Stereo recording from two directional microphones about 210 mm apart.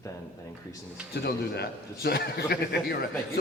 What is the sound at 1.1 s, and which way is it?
A man's voice, 45° left (ahead or behind).